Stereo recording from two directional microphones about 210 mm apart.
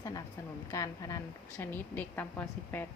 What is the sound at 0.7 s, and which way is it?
A woman's voice, 15° left (ahead or behind).